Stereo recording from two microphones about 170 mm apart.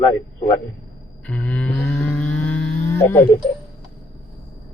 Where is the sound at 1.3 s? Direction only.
5° left (ahead or behind).